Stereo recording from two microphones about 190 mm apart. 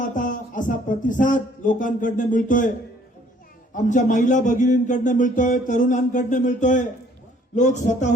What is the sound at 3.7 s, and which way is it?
A man's voice, 40° left (ahead or behind).